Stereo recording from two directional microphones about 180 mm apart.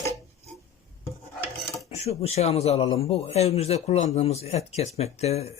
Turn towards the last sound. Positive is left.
turn(degrees=35)  # may be behind; listen again after turning